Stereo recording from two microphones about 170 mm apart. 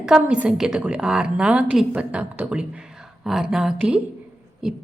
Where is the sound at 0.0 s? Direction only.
5° right (ahead or behind).